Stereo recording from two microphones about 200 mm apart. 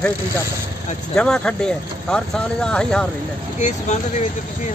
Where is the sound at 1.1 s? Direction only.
5° left (ahead or behind).